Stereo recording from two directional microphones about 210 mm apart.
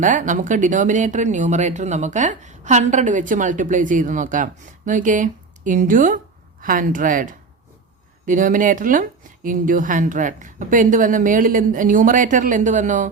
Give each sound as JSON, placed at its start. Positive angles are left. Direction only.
{"t": 0.0, "sound": "speech", "side_deg": -40}